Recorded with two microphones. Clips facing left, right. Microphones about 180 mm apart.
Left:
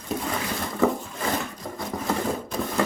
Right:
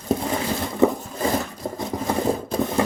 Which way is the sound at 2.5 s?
35° right (ahead or behind).